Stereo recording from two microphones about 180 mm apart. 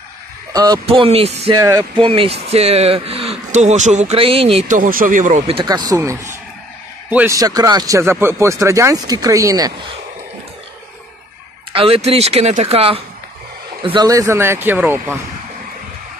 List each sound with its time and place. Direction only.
0.5 s speech: 20° right (ahead or behind)
0.8 s a man's voice: 30° right (ahead or behind)
1.6 s speech: 20° right (ahead or behind)
2.0 s a man's voice: 30° right (ahead or behind)
4.6 s speech: 50° right (ahead or behind)
5.5 s speech: 25° right (ahead or behind)
11.7 s a man's voice: 30° right (ahead or behind)
13.8 s speech: 20° right (ahead or behind)